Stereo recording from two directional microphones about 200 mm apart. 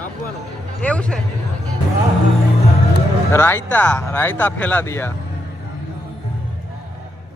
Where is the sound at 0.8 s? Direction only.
5° left (ahead or behind).